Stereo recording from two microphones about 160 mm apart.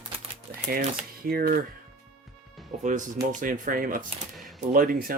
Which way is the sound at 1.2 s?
65° right (ahead or behind).